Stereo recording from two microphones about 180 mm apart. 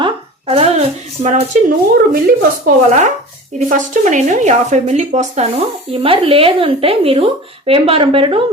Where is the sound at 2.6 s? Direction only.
45° right (ahead or behind).